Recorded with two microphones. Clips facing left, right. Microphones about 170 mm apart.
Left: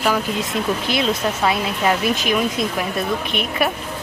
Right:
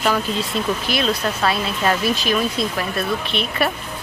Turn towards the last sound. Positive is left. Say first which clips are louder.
# left 1 dB
turn(degrees=15)  # may be behind; listen again after turning